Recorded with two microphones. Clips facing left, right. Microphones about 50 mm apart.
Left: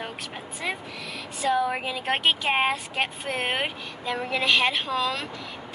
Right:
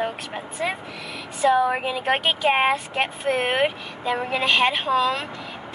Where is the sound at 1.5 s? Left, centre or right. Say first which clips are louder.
Right 2 dB; right.